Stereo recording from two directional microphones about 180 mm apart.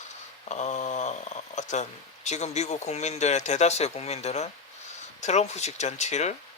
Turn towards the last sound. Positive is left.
turn(degrees=40)  # may be behind; listen again after turning